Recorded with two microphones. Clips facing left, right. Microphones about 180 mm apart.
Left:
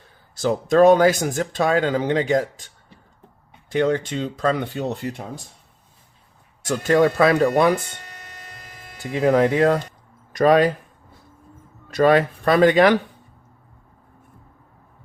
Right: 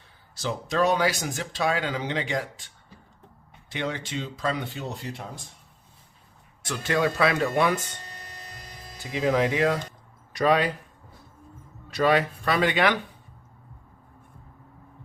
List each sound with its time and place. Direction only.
0.3 s speech: 50° left (ahead or behind)
3.7 s speech: 45° left (ahead or behind)
6.7 s speech: 40° left (ahead or behind)
9.1 s speech: 50° left (ahead or behind)
11.9 s speech: 50° left (ahead or behind)